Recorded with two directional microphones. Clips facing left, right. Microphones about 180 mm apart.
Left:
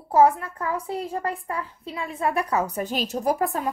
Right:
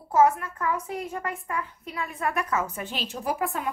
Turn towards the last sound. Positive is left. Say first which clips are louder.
# left 5 dB
turn(degrees=40)  # may be behind; listen again after turning